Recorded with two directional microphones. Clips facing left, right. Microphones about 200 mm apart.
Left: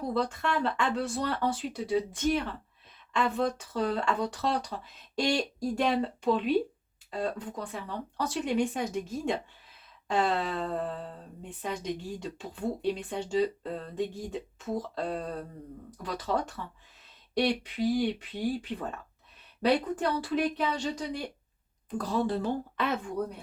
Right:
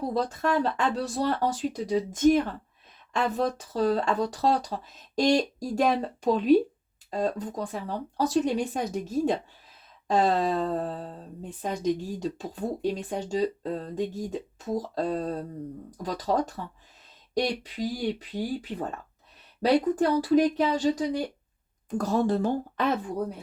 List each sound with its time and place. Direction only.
0.1 s speech: 40° right (ahead or behind)